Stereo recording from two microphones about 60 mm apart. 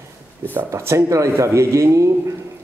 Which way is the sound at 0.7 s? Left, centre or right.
Right.